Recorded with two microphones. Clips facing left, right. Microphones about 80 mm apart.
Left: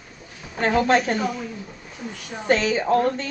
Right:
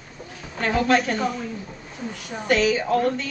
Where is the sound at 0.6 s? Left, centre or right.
Left.